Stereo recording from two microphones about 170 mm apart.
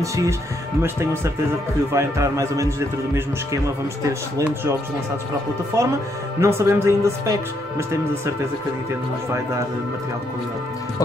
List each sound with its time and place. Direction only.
0.0 s a man's voice: 20° right (ahead or behind)